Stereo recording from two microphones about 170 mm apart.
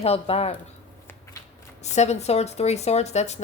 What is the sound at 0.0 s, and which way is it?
Speech, 35° left (ahead or behind).